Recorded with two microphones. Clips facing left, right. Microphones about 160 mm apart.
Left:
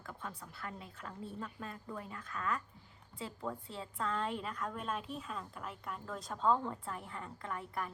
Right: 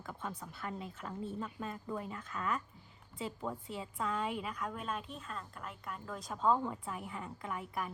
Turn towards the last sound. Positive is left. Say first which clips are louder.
# right 1 dB
turn(degrees=-10)  # may be behind; listen again after turning